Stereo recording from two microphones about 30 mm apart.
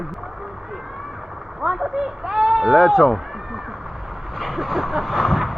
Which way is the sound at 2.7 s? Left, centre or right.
Centre.